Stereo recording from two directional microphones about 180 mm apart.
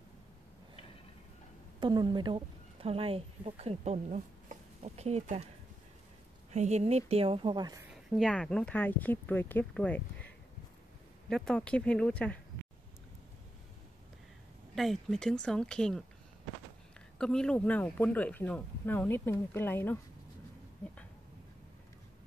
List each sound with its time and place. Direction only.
1.8 s a woman's voice: 25° right (ahead or behind)
6.5 s a woman's voice: 40° right (ahead or behind); by 7.8 s 25° right (ahead or behind)
7.9 s speech: centre (ahead or behind)
14.8 s speech: centre (ahead or behind)
17.2 s speech: 5° left (ahead or behind)